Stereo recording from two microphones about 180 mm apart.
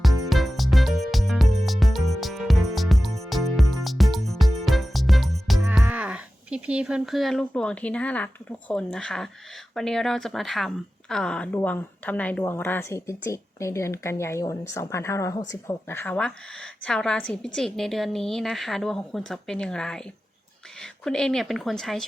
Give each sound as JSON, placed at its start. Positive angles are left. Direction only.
{"t": 0.0, "sound": "music", "side_deg": 0}
{"t": 9.7, "sound": "a woman's voice", "side_deg": 0}